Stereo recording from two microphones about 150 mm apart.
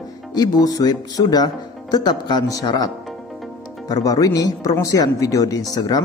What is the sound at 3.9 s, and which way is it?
Speech, 25° left (ahead or behind).